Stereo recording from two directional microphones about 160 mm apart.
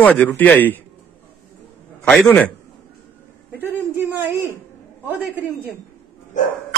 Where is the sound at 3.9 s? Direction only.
15° right (ahead or behind).